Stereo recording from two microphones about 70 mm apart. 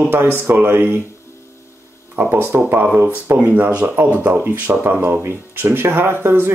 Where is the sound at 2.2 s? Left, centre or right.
Right.